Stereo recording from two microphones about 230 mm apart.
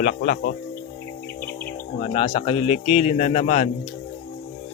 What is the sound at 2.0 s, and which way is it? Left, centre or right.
A man's voice, left.